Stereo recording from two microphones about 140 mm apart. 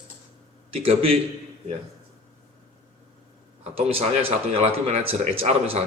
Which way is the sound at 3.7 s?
45° right (ahead or behind).